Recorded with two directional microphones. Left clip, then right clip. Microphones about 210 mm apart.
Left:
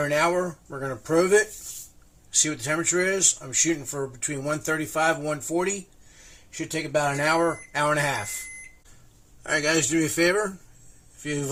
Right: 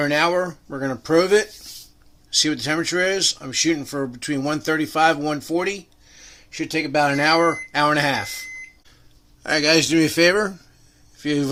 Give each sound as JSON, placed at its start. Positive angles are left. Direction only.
{"t": 0.0, "sound": "speech", "side_deg": -55}
{"t": 9.4, "sound": "speech", "side_deg": -55}